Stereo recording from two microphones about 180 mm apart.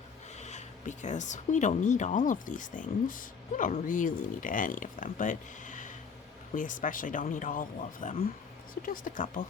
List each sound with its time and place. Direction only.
0.4 s speech: 40° left (ahead or behind)